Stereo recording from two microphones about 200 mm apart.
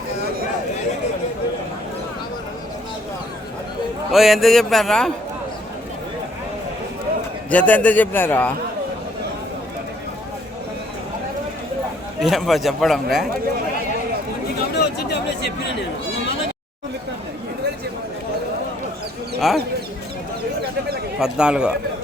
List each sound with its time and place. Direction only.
4.1 s speech: centre (ahead or behind)
7.5 s a man's voice: 5° left (ahead or behind)
12.2 s speech: centre (ahead or behind)
14.8 s a sound: 55° left (ahead or behind)
19.4 s speech: centre (ahead or behind)
21.2 s speech: 5° right (ahead or behind)